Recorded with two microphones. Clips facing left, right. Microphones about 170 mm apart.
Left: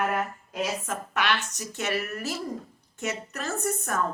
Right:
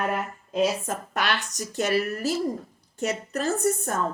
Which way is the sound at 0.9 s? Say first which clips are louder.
Even; 40° right (ahead or behind).